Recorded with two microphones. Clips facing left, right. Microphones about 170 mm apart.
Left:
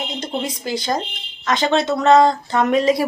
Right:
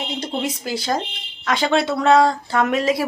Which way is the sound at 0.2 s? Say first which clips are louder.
Even; 5° right (ahead or behind).